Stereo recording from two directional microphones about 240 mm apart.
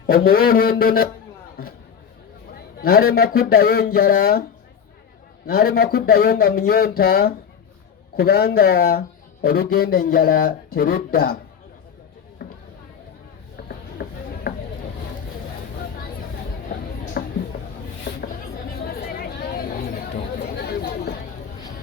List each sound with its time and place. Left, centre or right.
0.1 s speech: left
2.5 s speech: left
5.5 s speech: left
13.6 s a sound: left
17.2 s a sound: left
18.8 s chatter: left